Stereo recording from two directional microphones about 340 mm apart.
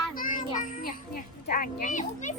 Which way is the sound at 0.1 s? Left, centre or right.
Left.